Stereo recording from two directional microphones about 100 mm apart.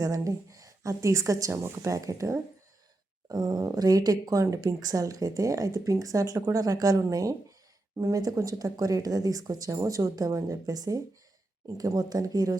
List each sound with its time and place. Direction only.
0.0 s speech: 35° right (ahead or behind)
3.2 s speech: 45° right (ahead or behind)